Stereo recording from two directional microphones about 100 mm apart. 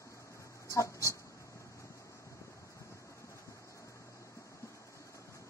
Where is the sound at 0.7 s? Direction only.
30° left (ahead or behind).